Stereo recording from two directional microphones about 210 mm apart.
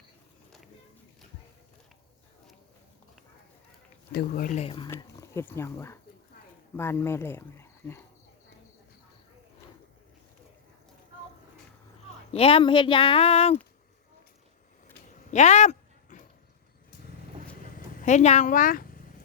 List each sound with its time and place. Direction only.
4.1 s speech: 45° left (ahead or behind); by 4.9 s 25° left (ahead or behind)
4.9 s speech: 15° left (ahead or behind)
12.3 s speech: 25° left (ahead or behind)
15.3 s a sound: 35° left (ahead or behind)
17.5 s vehicle: 40° left (ahead or behind)